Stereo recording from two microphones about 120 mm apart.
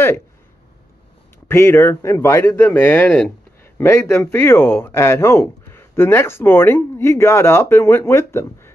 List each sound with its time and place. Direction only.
1.5 s speech: 20° left (ahead or behind)